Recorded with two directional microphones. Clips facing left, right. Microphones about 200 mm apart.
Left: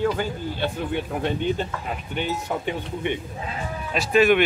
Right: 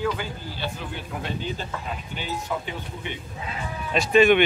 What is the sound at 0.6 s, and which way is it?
A man's voice, 60° left (ahead or behind).